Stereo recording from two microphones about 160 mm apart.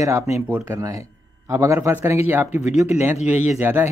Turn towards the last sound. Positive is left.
turn(degrees=-10)  # may be behind; listen again after turning